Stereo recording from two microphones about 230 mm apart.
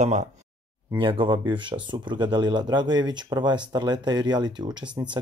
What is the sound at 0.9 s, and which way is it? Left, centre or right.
Speech, right.